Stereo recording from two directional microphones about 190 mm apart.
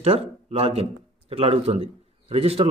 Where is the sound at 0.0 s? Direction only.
30° right (ahead or behind).